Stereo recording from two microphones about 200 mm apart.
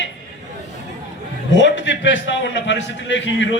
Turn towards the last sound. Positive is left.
turn(degrees=65)  # may be behind; listen again after turning